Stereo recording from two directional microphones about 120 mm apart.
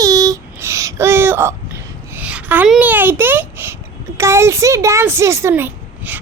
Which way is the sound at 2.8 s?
15° right (ahead or behind).